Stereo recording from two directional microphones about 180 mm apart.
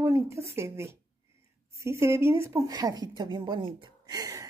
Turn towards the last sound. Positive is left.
turn(degrees=-20)  # may be behind; listen again after turning